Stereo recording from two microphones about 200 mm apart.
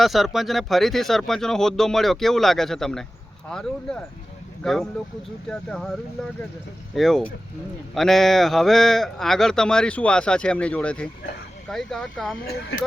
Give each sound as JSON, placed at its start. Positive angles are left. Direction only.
{"t": 0.0, "sound": "speech", "side_deg": 0}
{"t": 6.9, "sound": "speech", "side_deg": 0}
{"t": 12.5, "sound": "speech", "side_deg": 50}